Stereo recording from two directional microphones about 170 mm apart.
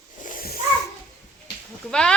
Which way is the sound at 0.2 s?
55° left (ahead or behind).